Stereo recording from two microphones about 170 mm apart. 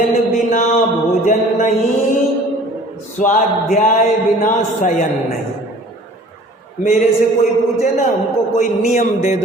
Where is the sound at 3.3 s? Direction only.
50° left (ahead or behind).